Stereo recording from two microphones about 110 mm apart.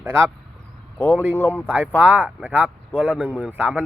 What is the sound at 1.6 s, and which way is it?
Speech, 15° right (ahead or behind).